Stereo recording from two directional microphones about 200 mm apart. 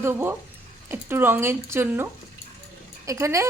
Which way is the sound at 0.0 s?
10° right (ahead or behind).